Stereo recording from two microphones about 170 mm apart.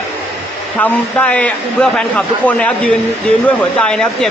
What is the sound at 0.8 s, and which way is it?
A man's voice, 10° left (ahead or behind).